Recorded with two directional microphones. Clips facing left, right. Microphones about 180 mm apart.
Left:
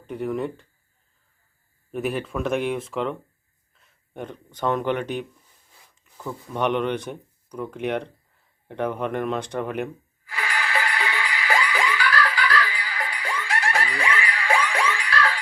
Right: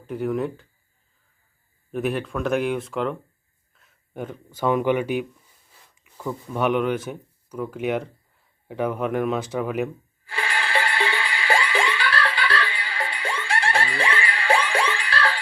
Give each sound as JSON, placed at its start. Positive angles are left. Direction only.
{"t": 0.1, "sound": "speech", "side_deg": 0}
{"t": 1.9, "sound": "speech", "side_deg": 0}
{"t": 10.2, "sound": "music", "side_deg": -30}